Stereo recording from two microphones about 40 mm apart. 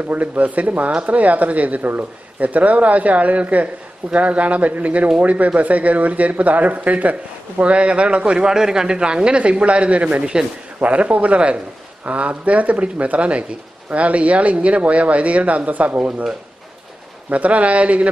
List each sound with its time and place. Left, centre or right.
0.1 s speech: right
17.3 s speech: right